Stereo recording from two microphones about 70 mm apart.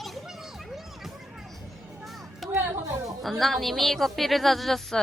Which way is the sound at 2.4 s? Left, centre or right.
Centre.